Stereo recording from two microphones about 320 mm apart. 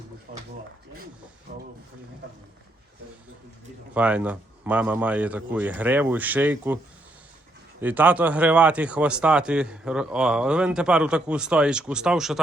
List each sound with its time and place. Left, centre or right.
0.3 s a sound: right
1.5 s speech: right
3.9 s speech: centre
7.8 s speech: centre